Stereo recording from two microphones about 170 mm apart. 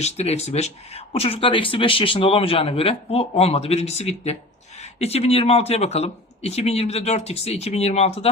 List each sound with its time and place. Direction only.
0.0 s speech: 40° left (ahead or behind)